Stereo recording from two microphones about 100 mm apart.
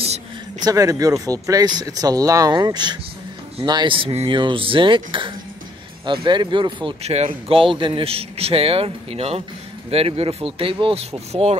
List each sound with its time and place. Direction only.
0.6 s speech: 35° right (ahead or behind); by 4.3 s 75° right (ahead or behind)
4.3 s speech: 55° right (ahead or behind)
7.0 s a man's voice: 90° right